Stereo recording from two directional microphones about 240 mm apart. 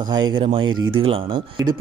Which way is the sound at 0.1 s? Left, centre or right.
Centre.